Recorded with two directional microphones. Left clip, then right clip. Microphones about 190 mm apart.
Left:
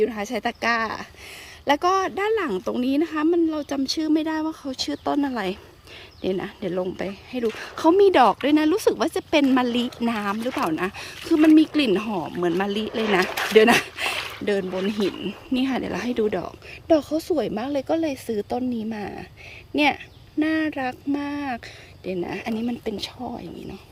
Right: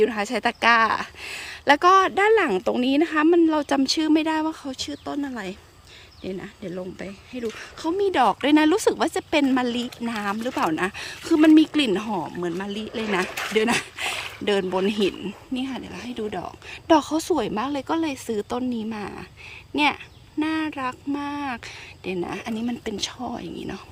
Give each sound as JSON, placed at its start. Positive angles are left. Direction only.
{"t": 0.0, "sound": "speech", "side_deg": -10}
{"t": 15.5, "sound": "speech", "side_deg": 10}
{"t": 16.9, "sound": "speech", "side_deg": -10}